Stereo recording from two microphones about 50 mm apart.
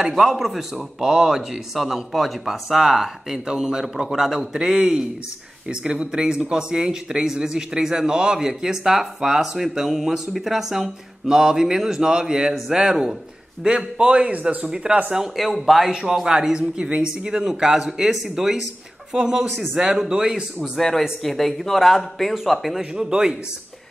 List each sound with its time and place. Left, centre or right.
0.0 s a man's voice: centre; by 14.7 s right
14.7 s speech: centre
15.3 s speech: centre
19.8 s speech: centre
20.7 s a man's voice: centre
22.9 s speech: centre